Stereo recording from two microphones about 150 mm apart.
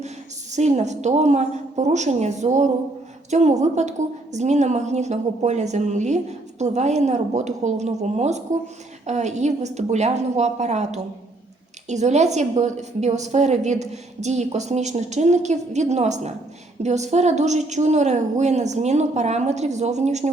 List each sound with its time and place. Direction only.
0.5 s a woman's voice: 50° right (ahead or behind)